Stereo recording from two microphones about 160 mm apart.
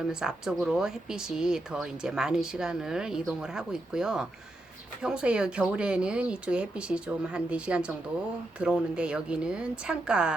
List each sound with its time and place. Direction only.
0.1 s speech: 5° right (ahead or behind)